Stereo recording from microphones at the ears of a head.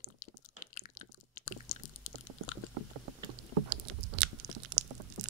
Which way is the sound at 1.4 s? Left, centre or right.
Left.